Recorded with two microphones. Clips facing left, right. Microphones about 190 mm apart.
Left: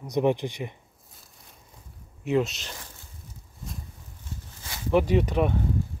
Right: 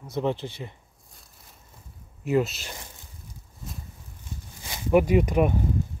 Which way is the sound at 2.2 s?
5° right (ahead or behind).